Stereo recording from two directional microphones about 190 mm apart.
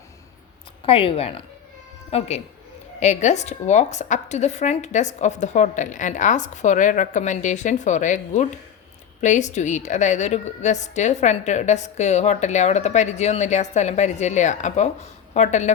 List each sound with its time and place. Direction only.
0.9 s a woman's voice: 30° left (ahead or behind)